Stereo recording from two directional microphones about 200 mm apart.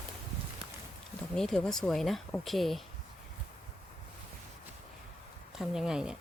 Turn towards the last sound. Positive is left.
turn(degrees=-5)  # may be behind; listen again after turning